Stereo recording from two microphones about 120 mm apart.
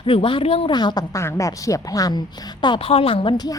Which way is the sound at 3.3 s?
35° left (ahead or behind).